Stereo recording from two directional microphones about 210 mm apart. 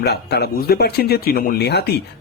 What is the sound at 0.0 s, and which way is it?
Speech, 50° left (ahead or behind).